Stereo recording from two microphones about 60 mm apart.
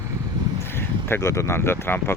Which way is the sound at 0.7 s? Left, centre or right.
Left.